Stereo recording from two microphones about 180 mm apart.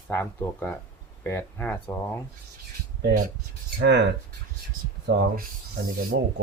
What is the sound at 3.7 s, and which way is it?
Speech, 70° right (ahead or behind).